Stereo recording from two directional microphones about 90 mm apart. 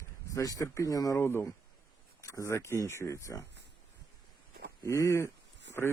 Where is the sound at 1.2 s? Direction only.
25° left (ahead or behind).